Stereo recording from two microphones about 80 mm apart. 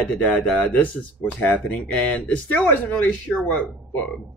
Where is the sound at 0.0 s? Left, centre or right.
Centre.